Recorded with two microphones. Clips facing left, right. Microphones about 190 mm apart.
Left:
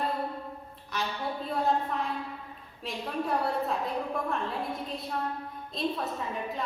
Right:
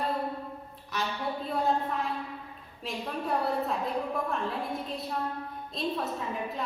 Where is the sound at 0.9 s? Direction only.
Centre (ahead or behind).